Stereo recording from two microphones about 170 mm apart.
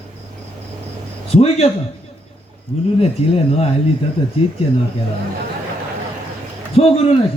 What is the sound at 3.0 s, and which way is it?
Speech, 35° left (ahead or behind).